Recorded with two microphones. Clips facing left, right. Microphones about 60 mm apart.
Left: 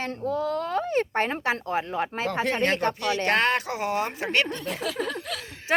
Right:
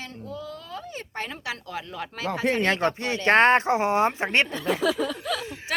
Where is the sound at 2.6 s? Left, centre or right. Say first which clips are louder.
Even; right.